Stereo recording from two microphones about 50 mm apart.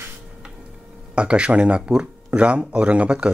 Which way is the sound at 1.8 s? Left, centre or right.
Centre.